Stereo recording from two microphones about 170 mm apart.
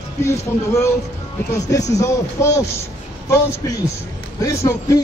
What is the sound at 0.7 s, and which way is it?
A man's voice, 15° left (ahead or behind).